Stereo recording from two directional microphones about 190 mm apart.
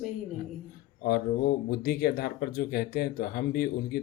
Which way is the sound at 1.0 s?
55° left (ahead or behind).